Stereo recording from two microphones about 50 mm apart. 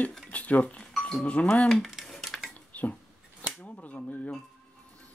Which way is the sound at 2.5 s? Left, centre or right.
Left.